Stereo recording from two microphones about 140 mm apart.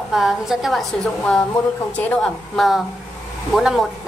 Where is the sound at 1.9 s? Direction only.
5° left (ahead or behind).